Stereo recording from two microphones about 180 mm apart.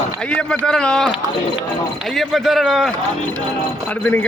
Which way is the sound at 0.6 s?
5° left (ahead or behind).